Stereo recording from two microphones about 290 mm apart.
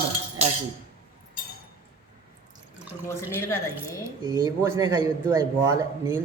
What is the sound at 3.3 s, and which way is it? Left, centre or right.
Speech, centre.